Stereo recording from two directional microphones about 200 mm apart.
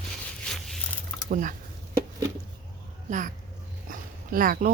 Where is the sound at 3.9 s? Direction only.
45° right (ahead or behind).